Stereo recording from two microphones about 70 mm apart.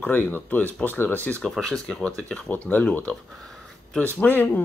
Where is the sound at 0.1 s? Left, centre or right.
Left.